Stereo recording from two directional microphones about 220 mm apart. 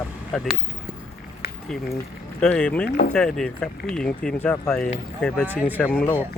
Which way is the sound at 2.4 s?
5° left (ahead or behind).